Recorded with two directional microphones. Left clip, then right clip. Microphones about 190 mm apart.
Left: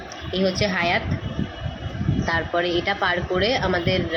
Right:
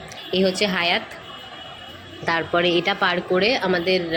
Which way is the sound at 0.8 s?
45° right (ahead or behind).